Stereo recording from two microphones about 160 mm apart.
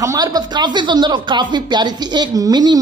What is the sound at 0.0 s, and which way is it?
Speech, 20° right (ahead or behind).